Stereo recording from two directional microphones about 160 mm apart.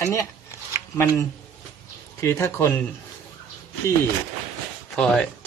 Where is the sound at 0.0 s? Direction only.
20° left (ahead or behind).